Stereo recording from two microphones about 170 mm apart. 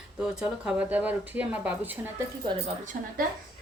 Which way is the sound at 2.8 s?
50° right (ahead or behind).